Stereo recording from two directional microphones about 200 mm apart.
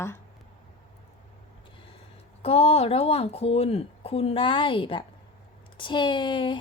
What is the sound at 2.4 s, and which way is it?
A woman's voice, 30° left (ahead or behind).